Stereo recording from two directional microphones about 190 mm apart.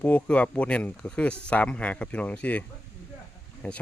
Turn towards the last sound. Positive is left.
turn(degrees=10)  # may be behind; listen again after turning